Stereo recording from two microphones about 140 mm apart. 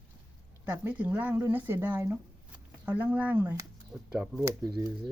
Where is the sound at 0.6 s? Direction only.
10° right (ahead or behind).